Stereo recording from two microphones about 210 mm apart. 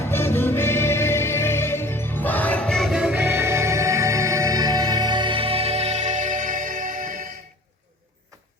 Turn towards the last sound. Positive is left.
turn(degrees=-40)  # may be behind; listen again after turning